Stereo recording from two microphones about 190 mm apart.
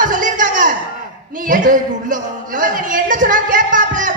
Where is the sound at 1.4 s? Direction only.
45° right (ahead or behind).